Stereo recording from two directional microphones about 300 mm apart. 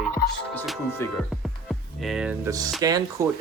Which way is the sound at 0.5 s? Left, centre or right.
Centre.